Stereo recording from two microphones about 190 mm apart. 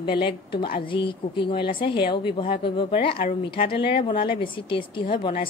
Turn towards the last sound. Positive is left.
turn(degrees=25)  # may be behind; listen again after turning